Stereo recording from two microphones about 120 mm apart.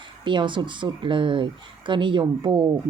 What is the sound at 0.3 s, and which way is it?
Speech, 40° right (ahead or behind).